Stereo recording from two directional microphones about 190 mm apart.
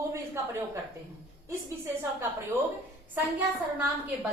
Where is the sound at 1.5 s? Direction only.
15° right (ahead or behind).